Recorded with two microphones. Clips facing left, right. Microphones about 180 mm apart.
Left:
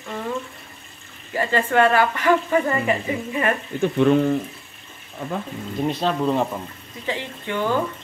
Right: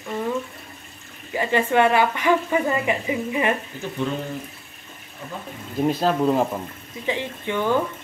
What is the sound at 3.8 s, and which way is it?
Speech, 65° left (ahead or behind).